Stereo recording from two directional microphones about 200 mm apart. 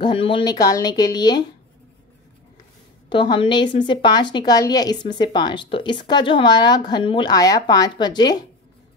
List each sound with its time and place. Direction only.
0.0 s a woman's voice: 25° left (ahead or behind)
3.1 s a woman's voice: 25° left (ahead or behind)